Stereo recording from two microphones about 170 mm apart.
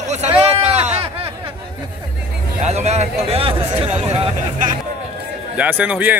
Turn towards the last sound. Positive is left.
turn(degrees=-10)  # may be behind; listen again after turning